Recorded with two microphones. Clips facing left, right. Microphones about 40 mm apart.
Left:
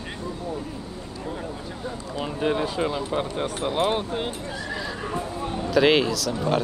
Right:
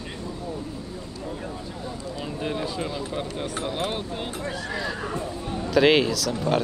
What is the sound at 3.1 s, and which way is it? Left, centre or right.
Speech, left.